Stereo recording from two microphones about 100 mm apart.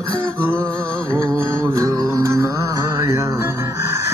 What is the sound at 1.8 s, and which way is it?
Music, 30° right (ahead or behind).